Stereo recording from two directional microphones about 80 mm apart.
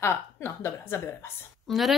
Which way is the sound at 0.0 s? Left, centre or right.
Left.